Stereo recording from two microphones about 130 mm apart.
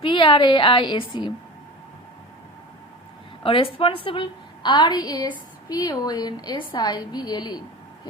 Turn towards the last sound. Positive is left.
turn(degrees=30)  # may be behind; listen again after turning